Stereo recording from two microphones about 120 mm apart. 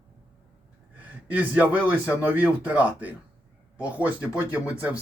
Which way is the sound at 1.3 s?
10° right (ahead or behind).